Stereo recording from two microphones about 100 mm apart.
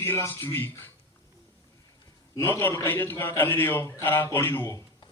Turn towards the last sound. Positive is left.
turn(degrees=30)  # may be behind; listen again after turning